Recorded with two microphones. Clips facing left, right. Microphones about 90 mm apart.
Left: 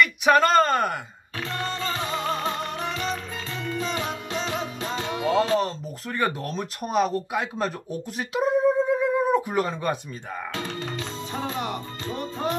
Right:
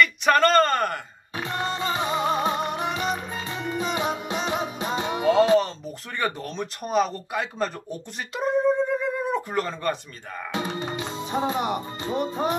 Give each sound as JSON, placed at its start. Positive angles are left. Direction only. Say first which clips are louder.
{"t": 0.0, "sound": "speech", "louder": "even", "side_deg": 5}
{"t": 1.3, "sound": "music", "louder": "right 2 dB", "side_deg": -15}
{"t": 6.1, "sound": "speech", "louder": "left 2 dB", "side_deg": 0}
{"t": 10.5, "sound": "music", "louder": "right 6 dB", "side_deg": -20}